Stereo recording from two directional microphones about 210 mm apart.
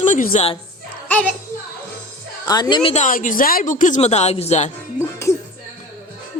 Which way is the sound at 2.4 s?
20° left (ahead or behind).